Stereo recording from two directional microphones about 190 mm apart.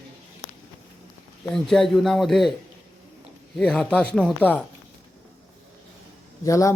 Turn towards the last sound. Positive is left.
turn(degrees=15)  # may be behind; listen again after turning